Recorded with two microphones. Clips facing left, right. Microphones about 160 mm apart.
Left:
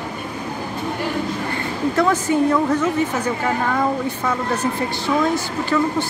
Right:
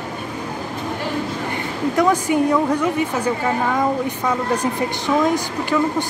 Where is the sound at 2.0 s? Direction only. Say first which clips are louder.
Right 1 dB; 15° right (ahead or behind).